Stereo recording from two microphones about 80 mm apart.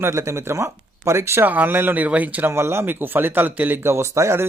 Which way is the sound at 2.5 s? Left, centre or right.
Right.